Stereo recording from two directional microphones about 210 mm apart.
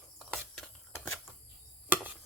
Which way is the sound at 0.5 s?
5° left (ahead or behind).